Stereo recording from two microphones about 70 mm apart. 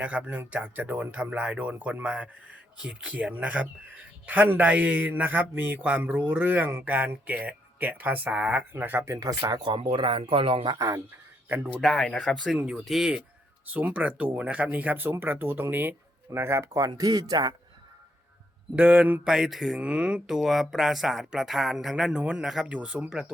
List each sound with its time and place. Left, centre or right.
0.0 s a man's voice: right
8.7 s speech: right
9.4 s speech: right
10.8 s speech: right
11.8 s speech: centre
12.5 s mantra: centre
12.8 s speech: centre
13.7 s a man's voice: right
18.8 s mantra: centre
19.2 s mantra: centre
19.8 s speech: centre
22.2 s mantra: centre